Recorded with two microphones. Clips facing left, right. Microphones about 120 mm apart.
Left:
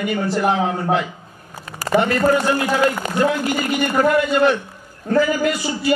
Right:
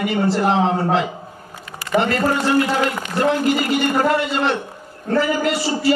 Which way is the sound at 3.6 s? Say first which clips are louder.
Even; 30° right (ahead or behind).